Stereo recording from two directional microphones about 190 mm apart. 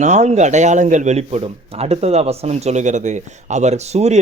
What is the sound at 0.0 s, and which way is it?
A man's voice, 35° right (ahead or behind).